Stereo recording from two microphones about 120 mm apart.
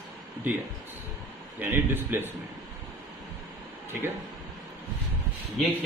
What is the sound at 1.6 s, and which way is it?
Speech, 15° right (ahead or behind).